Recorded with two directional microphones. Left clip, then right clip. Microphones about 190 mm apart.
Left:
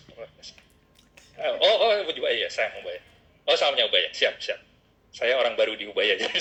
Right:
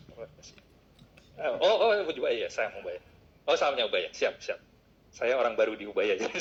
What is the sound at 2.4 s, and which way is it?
Speech, 45° left (ahead or behind).